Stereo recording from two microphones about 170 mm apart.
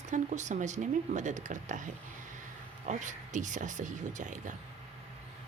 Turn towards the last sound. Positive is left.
turn(degrees=-45)  # may be behind; listen again after turning